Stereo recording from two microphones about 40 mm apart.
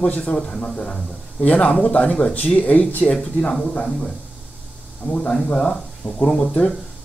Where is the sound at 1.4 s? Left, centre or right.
Left.